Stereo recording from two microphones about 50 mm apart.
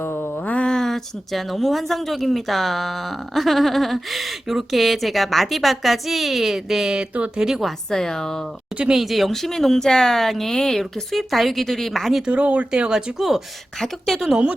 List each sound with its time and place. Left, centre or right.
0.0 s a sound: left
0.3 s mantra: left
0.6 s a woman's voice: centre
7.9 s a woman's voice: centre
9.0 s a woman's voice: centre
12.3 s speech: right
13.1 s a woman's voice: centre
13.7 s a woman's voice: centre